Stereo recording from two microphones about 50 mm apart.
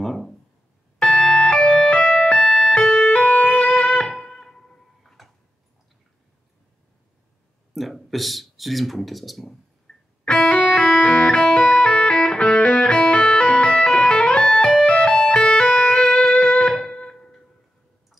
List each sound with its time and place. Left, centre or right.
0.0 s a sound: centre
0.9 s music: left
2.8 s music: left
4.1 s music: centre
7.7 s speech: centre
9.9 s music: centre